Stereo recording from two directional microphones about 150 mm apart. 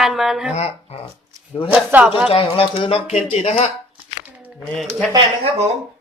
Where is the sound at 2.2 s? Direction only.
40° left (ahead or behind).